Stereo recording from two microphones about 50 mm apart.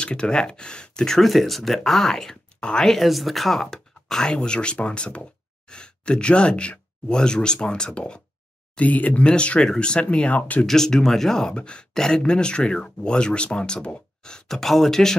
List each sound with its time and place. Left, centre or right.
0.0 s speech: centre
2.9 s speech: centre; by 8.2 s left
8.7 s speech: left
10.7 s speech: centre
11.5 s speech: left